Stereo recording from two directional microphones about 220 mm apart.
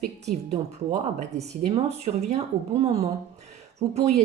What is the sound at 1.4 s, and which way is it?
Speech, 30° right (ahead or behind).